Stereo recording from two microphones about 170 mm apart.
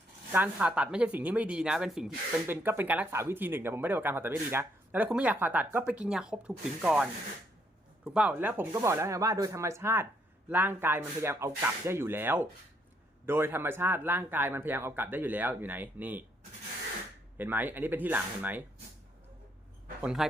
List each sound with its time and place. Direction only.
0.3 s speech: 10° right (ahead or behind)
17.3 s speech: 10° right (ahead or behind)
20.0 s speech: 5° right (ahead or behind)